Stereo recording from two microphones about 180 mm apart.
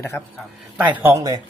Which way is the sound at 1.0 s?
15° right (ahead or behind).